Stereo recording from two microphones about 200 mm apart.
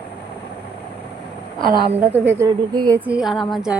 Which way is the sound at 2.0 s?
10° right (ahead or behind).